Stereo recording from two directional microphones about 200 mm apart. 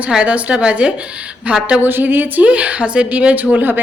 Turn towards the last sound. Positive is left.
turn(degrees=-10)  # may be behind; listen again after turning